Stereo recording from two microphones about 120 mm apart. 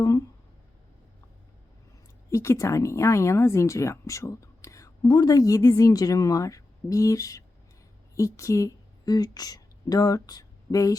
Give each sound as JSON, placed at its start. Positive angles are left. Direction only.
{"t": 0.0, "sound": "speech", "side_deg": 25}
{"t": 2.3, "sound": "a woman's voice", "side_deg": 25}